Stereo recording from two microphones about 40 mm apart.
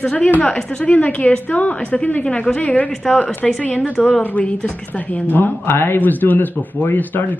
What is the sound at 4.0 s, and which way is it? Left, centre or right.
Speech, centre.